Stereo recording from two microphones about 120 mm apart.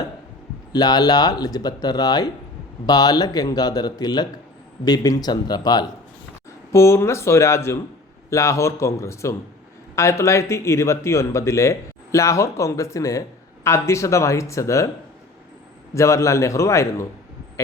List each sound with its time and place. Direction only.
0.7 s speech: 35° left (ahead or behind)
6.7 s speech: 20° left (ahead or behind)
16.0 s speech: 25° left (ahead or behind)